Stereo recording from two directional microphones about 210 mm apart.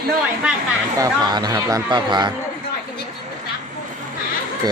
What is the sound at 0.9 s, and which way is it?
Speech, 20° right (ahead or behind).